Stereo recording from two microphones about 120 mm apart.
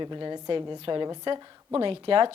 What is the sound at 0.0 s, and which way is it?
A woman's voice, 35° right (ahead or behind).